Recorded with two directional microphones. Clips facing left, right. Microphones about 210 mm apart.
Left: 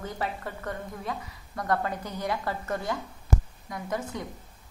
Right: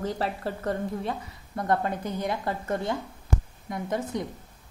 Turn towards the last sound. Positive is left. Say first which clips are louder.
# right 3 dB
turn(degrees=-25)  # may be behind; listen again after turning